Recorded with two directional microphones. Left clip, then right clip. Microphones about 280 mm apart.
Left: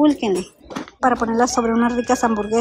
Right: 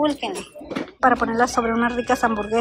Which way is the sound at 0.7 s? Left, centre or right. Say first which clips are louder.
Even; centre.